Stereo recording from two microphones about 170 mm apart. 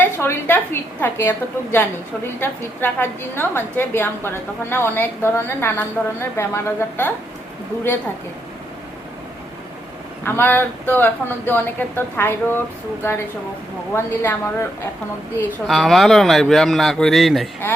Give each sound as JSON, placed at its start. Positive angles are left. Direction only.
{"t": 0.0, "sound": "a woman's voice", "side_deg": 10}
{"t": 10.2, "sound": "a woman's voice", "side_deg": 10}
{"t": 15.6, "sound": "speech", "side_deg": 0}